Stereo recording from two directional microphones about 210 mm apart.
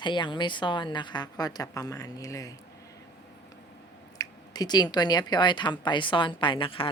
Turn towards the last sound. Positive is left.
turn(degrees=25)  # may be behind; listen again after turning